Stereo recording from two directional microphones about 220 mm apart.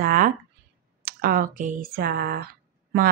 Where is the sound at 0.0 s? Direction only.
40° right (ahead or behind).